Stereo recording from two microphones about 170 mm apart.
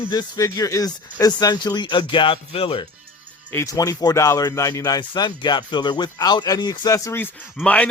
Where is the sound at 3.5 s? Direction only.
15° left (ahead or behind).